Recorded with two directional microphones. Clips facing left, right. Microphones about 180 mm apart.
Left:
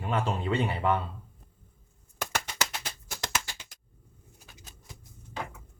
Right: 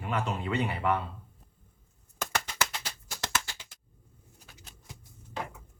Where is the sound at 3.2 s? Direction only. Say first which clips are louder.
Even; 15° left (ahead or behind).